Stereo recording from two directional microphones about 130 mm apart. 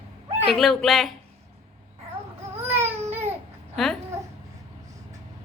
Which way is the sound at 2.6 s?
20° right (ahead or behind).